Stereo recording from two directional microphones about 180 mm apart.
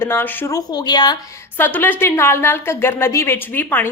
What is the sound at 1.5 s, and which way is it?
A woman's voice, 10° left (ahead or behind).